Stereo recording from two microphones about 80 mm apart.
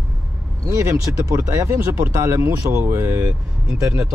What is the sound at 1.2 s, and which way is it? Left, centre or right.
Speech, right.